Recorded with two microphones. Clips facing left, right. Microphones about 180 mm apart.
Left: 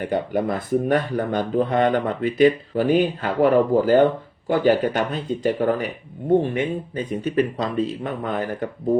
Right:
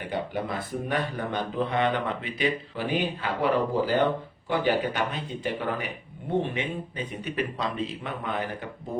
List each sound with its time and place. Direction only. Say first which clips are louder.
0.1 s speech: left 6 dB; 45° left (ahead or behind)